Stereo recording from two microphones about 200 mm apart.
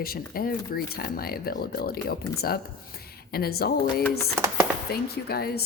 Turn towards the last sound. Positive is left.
turn(degrees=50)  # may be behind; listen again after turning